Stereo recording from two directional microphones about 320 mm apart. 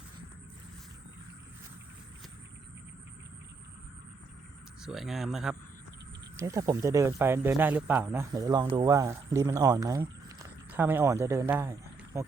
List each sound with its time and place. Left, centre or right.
4.8 s speech: centre